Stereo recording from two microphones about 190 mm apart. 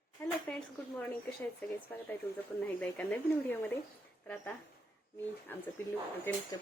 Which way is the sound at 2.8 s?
10° left (ahead or behind).